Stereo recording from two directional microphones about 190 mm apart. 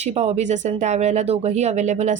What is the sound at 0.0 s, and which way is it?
A woman's voice, 35° right (ahead or behind).